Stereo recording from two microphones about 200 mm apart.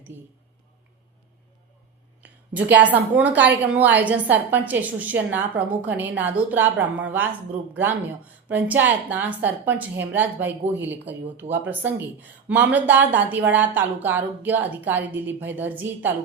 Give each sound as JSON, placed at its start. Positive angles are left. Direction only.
{"t": 0.1, "sound": "a woman's voice", "side_deg": -10}
{"t": 2.2, "sound": "a woman's voice", "side_deg": -10}